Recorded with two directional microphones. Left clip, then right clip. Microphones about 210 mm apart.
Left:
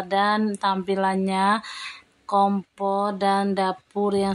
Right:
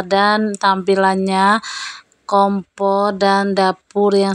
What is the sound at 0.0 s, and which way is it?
Speech, 25° right (ahead or behind).